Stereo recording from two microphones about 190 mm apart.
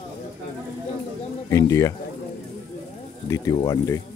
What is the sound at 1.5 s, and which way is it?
Speech, 15° left (ahead or behind).